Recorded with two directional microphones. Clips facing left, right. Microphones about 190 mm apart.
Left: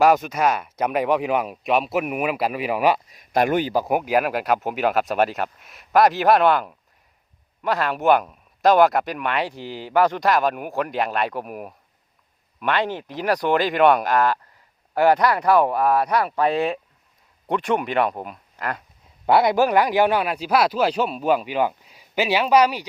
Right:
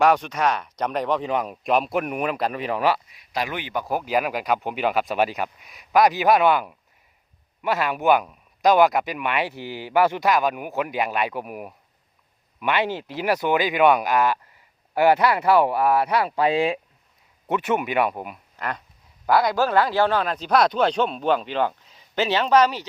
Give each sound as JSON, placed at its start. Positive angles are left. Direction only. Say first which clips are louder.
{"t": 0.0, "sound": "speech", "louder": "left 2 dB", "side_deg": 5}
{"t": 3.1, "sound": "speech", "louder": "left 9 dB", "side_deg": 50}
{"t": 3.8, "sound": "speech", "louder": "left 3 dB", "side_deg": 15}
{"t": 19.2, "sound": "speech", "louder": "left 3 dB", "side_deg": 25}